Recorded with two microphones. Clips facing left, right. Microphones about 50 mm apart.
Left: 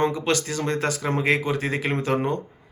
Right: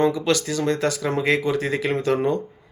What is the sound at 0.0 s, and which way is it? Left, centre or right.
Speech, left.